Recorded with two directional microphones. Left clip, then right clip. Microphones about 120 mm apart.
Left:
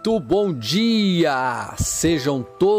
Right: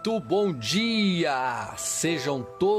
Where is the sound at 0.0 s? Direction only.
70° left (ahead or behind).